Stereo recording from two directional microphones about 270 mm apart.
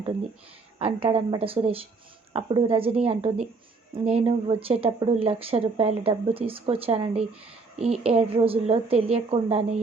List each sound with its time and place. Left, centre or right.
0.8 s speech: right